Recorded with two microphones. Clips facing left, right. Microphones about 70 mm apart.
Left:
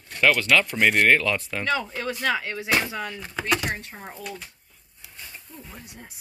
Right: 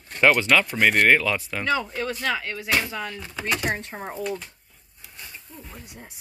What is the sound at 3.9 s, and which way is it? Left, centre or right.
Speech, right.